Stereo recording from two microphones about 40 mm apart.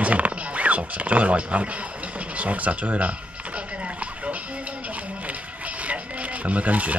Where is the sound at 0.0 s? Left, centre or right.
Right.